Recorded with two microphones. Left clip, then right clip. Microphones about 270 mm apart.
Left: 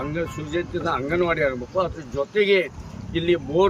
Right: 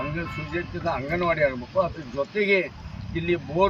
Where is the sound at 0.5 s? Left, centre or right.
Centre.